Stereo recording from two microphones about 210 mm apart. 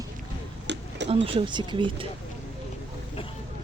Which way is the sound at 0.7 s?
55° right (ahead or behind).